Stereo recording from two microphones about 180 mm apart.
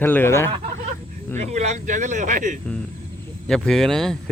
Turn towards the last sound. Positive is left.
turn(degrees=0)  # may be behind; listen again after turning